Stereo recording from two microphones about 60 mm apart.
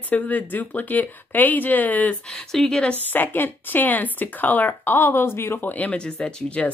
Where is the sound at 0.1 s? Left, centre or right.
Left.